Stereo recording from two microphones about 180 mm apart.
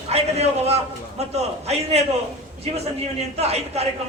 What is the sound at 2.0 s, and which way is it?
Speech, 35° right (ahead or behind).